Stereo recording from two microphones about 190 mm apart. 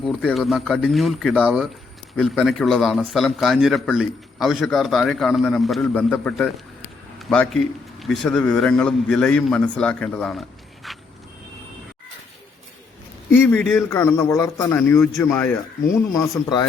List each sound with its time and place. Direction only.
0.0 s a man's voice: 5° left (ahead or behind)
10.8 s vehicle: centre (ahead or behind)
13.3 s a man's voice: 10° left (ahead or behind)